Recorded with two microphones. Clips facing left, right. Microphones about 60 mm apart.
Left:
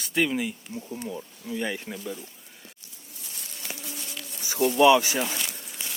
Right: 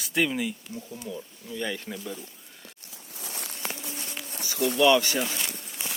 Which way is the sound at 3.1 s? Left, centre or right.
Right.